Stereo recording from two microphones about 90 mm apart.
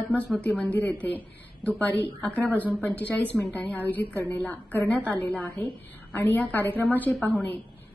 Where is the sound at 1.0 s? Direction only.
20° left (ahead or behind).